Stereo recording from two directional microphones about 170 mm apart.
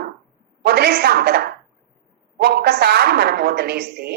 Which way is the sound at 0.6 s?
70° right (ahead or behind).